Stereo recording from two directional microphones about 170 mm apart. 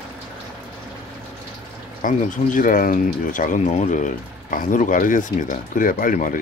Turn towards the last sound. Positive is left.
turn(degrees=55)  # may be behind; listen again after turning